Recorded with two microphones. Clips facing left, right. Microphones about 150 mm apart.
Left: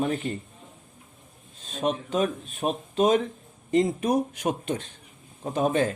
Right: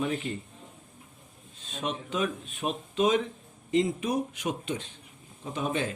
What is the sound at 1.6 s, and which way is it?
Speech, 40° left (ahead or behind).